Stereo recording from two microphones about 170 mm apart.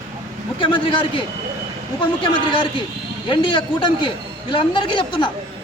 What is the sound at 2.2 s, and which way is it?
A man's voice, 30° left (ahead or behind).